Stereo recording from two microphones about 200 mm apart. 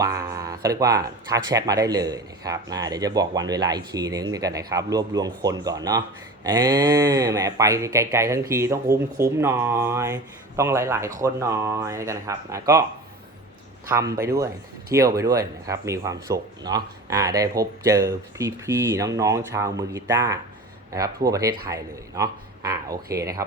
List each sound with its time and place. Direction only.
0.0 s speech: 15° right (ahead or behind)
13.8 s speech: 10° right (ahead or behind)